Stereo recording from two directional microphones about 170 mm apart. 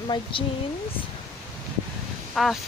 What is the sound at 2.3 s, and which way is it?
Speech, centre (ahead or behind).